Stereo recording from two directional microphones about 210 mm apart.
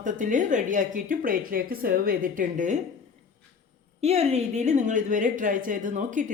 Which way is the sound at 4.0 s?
30° right (ahead or behind).